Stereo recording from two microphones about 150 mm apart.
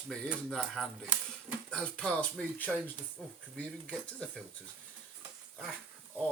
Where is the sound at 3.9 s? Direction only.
Centre (ahead or behind).